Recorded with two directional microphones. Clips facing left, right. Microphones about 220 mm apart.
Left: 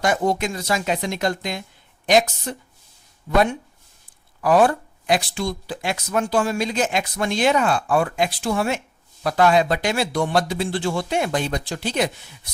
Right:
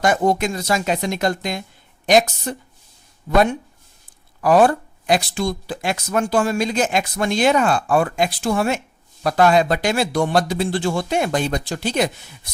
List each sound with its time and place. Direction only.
0.0 s speech: 45° right (ahead or behind)
4.4 s speech: 40° right (ahead or behind)